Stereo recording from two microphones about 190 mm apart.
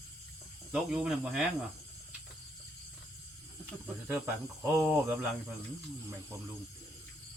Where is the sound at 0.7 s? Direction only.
5° right (ahead or behind).